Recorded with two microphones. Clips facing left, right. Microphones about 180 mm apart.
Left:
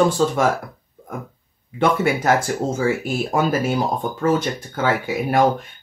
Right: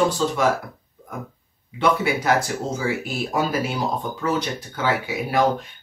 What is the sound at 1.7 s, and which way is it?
Speech, 50° left (ahead or behind).